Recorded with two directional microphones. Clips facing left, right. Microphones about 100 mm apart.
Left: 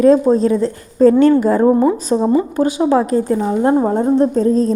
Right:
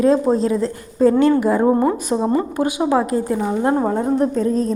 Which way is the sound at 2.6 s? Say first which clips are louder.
Left 4 dB; 20° right (ahead or behind).